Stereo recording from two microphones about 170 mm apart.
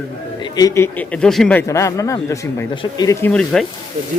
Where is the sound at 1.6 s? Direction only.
15° left (ahead or behind).